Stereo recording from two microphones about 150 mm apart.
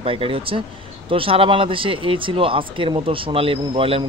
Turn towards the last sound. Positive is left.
turn(degrees=-40)  # may be behind; listen again after turning